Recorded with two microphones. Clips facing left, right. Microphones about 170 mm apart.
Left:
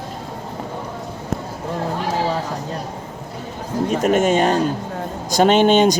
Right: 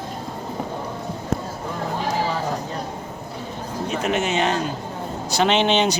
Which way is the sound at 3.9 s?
45° left (ahead or behind).